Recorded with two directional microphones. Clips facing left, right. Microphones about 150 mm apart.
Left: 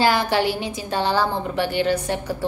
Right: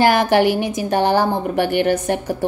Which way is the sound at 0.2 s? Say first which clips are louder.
Right 6 dB; 15° right (ahead or behind).